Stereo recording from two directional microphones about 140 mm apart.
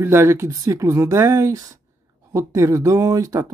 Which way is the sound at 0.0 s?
20° right (ahead or behind).